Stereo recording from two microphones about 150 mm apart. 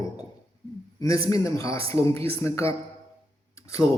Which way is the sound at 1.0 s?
20° left (ahead or behind).